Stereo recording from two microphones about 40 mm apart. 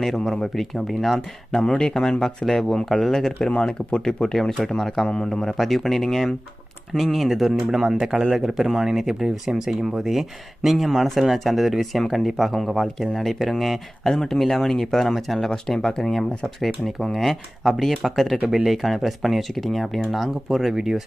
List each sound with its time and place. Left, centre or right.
0.0 s speech: centre
1.6 s speech: centre
2.4 s speech: centre
8.0 s speech: centre
16.6 s speech: centre